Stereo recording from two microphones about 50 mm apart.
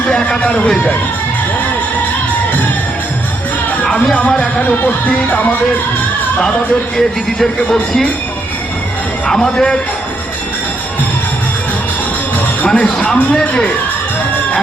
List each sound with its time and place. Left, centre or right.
0.1 s speech: centre
4.6 s music: left
6.9 s speech: centre
9.2 s speech: centre
12.6 s speech: left